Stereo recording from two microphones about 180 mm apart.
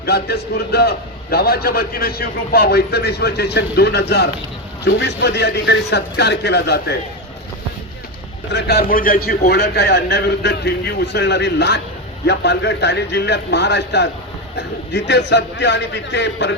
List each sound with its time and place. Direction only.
0.0 s a man's voice: 65° left (ahead or behind)
8.5 s a man's voice: 65° left (ahead or behind)